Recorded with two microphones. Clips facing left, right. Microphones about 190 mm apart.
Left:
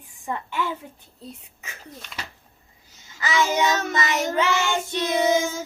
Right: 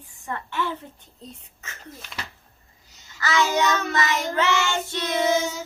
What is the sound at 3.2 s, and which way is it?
A child's voice, 15° left (ahead or behind).